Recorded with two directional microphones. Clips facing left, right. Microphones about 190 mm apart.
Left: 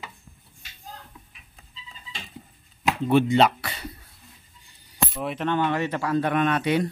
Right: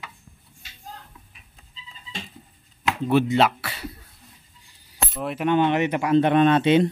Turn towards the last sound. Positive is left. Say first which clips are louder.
# right 6 dB
turn(degrees=-25)  # may be behind; listen again after turning